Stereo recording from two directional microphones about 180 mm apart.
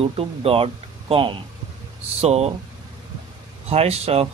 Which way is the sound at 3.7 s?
35° right (ahead or behind).